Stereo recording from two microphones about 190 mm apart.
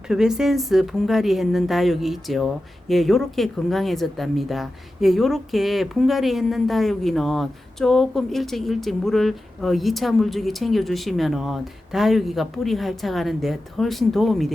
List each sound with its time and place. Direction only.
0.1 s speech: 5° right (ahead or behind)